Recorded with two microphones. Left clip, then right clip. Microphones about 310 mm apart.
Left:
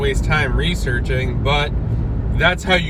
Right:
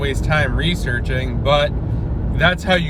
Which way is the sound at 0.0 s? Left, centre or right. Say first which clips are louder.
Even; centre.